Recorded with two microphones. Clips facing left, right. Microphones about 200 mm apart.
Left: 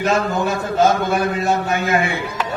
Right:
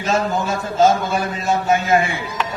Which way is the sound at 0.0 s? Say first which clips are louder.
Left 2 dB; 60° left (ahead or behind).